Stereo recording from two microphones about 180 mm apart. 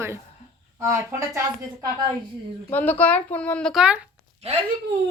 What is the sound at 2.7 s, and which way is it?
Speech, 10° left (ahead or behind).